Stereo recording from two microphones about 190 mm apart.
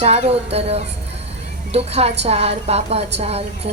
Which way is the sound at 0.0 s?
35° right (ahead or behind).